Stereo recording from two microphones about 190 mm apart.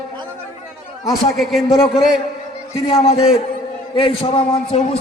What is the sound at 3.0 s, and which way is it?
A man's voice, 30° left (ahead or behind).